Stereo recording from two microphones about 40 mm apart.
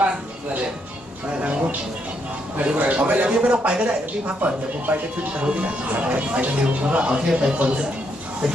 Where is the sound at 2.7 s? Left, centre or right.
Right.